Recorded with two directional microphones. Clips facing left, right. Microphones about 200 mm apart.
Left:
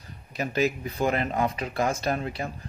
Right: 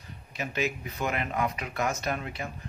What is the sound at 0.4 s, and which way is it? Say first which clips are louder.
Speech: left 5 dB; 35° left (ahead or behind).